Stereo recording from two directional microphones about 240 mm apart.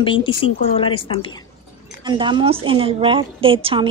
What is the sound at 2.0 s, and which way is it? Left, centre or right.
A woman's voice, centre.